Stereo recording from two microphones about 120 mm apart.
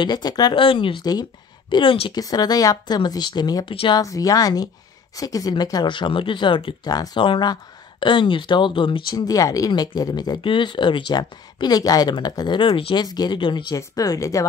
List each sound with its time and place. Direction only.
0.0 s speech: 35° left (ahead or behind)
0.6 s speech: 50° left (ahead or behind)
2.1 s speech: 35° left (ahead or behind)
9.1 s speech: 30° left (ahead or behind); by 13.0 s 45° left (ahead or behind)
13.0 s speech: 35° left (ahead or behind)
13.7 s speech: 30° left (ahead or behind)